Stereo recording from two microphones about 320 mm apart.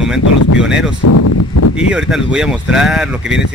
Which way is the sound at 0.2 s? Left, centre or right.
Left.